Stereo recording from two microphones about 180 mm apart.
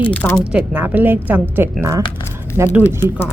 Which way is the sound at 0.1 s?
10° left (ahead or behind).